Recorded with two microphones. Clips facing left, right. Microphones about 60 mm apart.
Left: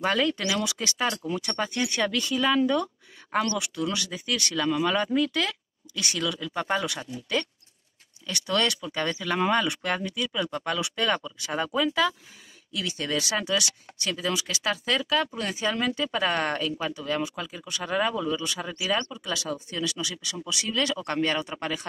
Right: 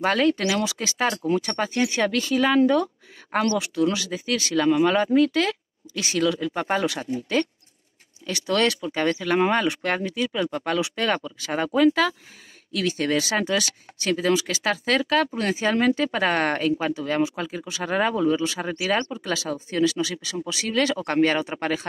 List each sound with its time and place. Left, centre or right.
0.0 s speech: right
6.1 s speech: right
14.9 s speech: right
17.6 s speech: right
21.5 s speech: right